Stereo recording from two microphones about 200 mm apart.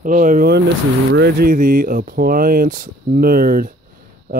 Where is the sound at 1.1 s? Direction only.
50° right (ahead or behind).